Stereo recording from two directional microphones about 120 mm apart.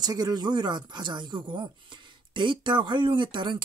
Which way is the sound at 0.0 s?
35° right (ahead or behind).